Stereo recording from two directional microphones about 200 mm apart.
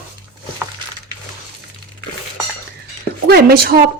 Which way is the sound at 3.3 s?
50° right (ahead or behind).